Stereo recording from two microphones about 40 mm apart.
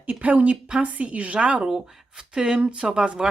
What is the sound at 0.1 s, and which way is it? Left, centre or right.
Speech, right.